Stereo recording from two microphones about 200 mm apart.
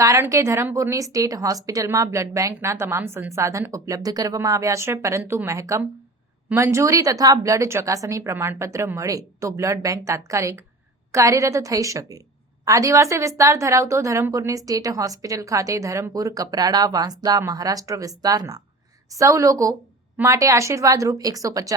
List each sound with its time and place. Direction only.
0.0 s a woman's voice: 15° right (ahead or behind)